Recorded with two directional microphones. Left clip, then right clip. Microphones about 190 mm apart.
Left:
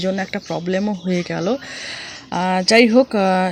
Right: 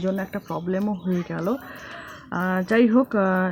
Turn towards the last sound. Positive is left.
turn(degrees=20)  # may be behind; listen again after turning